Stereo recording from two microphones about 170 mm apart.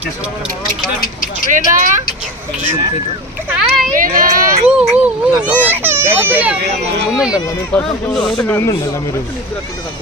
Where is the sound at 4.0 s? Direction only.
55° right (ahead or behind).